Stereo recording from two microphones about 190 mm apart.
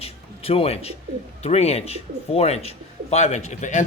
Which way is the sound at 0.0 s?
30° left (ahead or behind).